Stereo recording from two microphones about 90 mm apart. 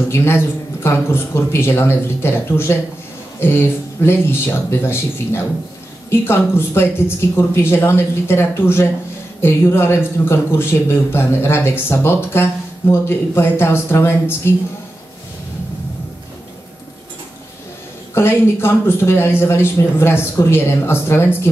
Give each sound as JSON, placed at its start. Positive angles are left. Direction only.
{"t": 0.1, "sound": "speech", "side_deg": 30}
{"t": 18.1, "sound": "speech", "side_deg": 25}